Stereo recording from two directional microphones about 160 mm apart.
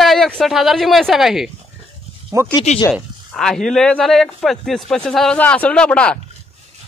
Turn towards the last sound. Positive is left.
turn(degrees=5)  # may be behind; listen again after turning